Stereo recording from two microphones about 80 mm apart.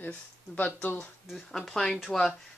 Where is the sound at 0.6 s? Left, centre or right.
Centre.